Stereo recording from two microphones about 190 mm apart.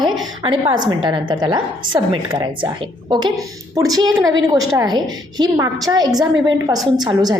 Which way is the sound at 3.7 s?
20° right (ahead or behind).